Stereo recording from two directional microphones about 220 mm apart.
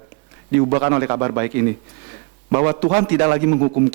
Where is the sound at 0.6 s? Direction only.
25° right (ahead or behind).